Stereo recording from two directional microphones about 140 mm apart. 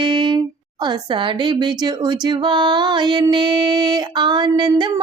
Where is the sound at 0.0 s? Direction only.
35° right (ahead or behind).